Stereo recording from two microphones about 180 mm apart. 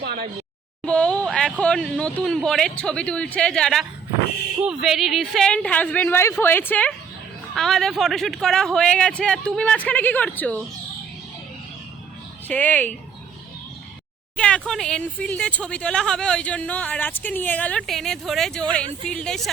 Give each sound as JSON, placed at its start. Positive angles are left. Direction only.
{"t": 0.0, "sound": "a sound", "side_deg": -55}
{"t": 0.9, "sound": "speech", "side_deg": 5}
{"t": 12.5, "sound": "speech", "side_deg": 10}
{"t": 14.3, "sound": "speech", "side_deg": 5}